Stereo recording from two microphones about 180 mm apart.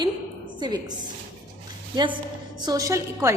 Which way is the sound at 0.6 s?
25° right (ahead or behind).